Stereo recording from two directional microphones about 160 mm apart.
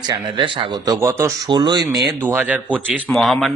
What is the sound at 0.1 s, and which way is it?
Speech, 30° right (ahead or behind).